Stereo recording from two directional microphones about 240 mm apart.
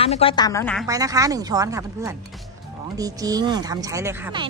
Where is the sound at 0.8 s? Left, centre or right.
Centre.